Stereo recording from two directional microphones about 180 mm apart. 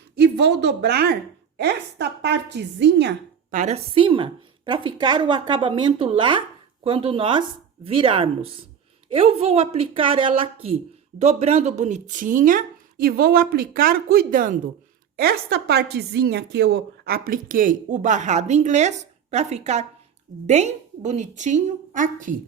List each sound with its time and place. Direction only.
0.2 s a woman's voice: 70° right (ahead or behind)
3.5 s a woman's voice: 40° right (ahead or behind)
15.1 s a woman's voice: 60° right (ahead or behind)